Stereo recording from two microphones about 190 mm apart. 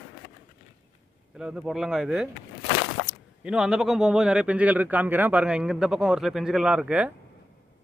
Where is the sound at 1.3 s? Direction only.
5° right (ahead or behind).